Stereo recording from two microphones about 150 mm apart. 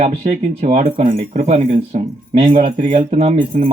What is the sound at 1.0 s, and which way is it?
Speech, 40° right (ahead or behind).